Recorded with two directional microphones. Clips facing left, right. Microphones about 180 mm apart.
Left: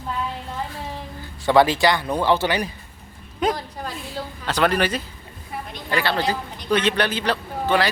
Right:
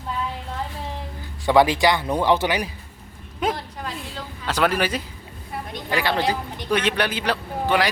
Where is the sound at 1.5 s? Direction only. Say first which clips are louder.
Even; 15° right (ahead or behind).